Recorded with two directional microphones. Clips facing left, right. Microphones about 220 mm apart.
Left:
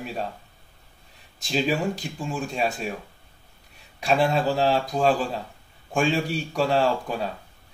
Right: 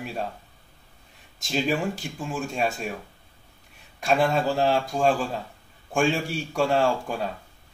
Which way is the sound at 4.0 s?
Centre (ahead or behind).